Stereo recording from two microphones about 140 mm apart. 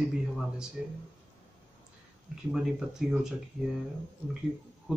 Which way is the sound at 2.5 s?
5° right (ahead or behind).